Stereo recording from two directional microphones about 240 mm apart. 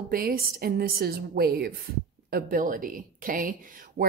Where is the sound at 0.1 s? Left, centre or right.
Right.